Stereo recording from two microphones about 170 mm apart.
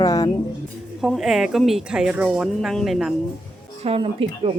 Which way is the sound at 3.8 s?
35° right (ahead or behind).